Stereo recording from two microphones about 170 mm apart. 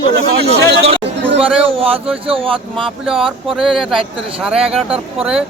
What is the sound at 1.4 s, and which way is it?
Speech, 35° right (ahead or behind).